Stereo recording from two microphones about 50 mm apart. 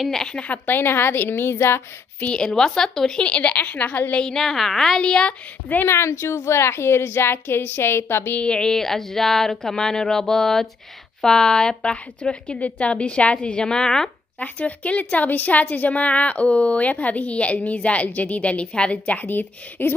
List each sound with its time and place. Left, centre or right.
0.1 s speech: centre
0.5 s a woman's voice: left
2.3 s speech: centre
3.2 s a woman's voice: left
4.1 s speech: centre
5.0 s a woman's voice: centre
5.9 s a woman's voice: left
8.4 s a woman's voice: centre
14.4 s a woman's voice: left
19.2 s a woman's voice: left